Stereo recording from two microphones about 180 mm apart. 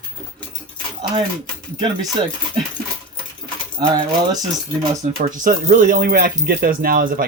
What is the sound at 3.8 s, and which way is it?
Speech, 25° right (ahead or behind).